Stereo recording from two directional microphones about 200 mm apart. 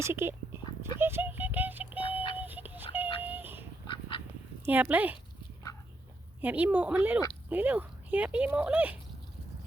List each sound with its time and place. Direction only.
0.0 s speech: 10° right (ahead or behind)
0.9 s synthetic singing: 10° right (ahead or behind)
2.4 s a sound: 10° right (ahead or behind)
3.8 s duck: 25° left (ahead or behind)
4.6 s speech: 10° right (ahead or behind)
6.4 s speech: 10° right (ahead or behind)